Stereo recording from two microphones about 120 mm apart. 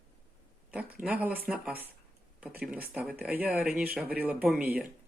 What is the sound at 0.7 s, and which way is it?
Speech, 10° right (ahead or behind).